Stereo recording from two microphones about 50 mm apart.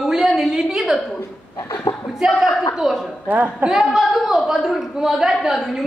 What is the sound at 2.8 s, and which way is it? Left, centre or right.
Speech, centre.